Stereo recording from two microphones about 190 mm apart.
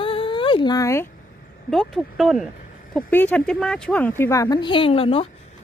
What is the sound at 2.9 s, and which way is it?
Speech, 10° left (ahead or behind).